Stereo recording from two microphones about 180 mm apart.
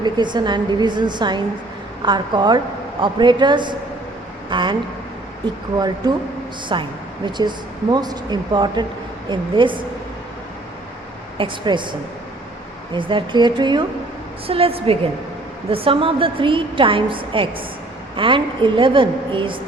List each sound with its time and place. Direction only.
0.0 s a woman's voice: 25° right (ahead or behind)
11.3 s a woman's voice: 25° right (ahead or behind)